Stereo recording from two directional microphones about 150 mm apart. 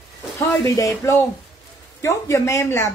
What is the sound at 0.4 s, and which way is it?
Speech, 20° left (ahead or behind).